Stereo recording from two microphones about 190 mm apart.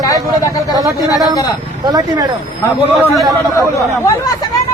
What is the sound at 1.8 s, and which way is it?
Speech, 20° right (ahead or behind).